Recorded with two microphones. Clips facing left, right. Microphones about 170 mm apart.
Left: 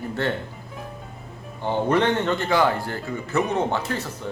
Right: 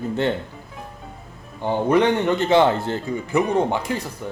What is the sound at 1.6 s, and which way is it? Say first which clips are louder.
Speech: right 3 dB; 15° right (ahead or behind).